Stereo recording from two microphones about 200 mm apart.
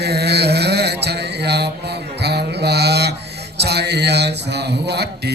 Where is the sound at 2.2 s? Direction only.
55° right (ahead or behind).